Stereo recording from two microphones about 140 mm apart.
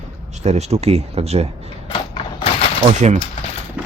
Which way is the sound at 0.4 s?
50° right (ahead or behind).